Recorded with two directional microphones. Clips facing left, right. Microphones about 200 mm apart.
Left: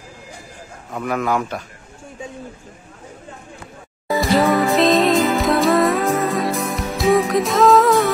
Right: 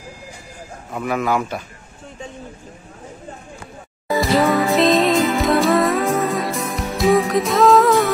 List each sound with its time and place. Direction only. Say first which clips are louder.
0.9 s a man's voice: even; 5° right (ahead or behind)
4.1 s music: even; centre (ahead or behind)